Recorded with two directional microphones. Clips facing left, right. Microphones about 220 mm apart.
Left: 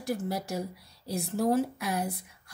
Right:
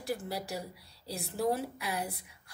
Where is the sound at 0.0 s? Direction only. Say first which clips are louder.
Left 4 dB; 45° left (ahead or behind).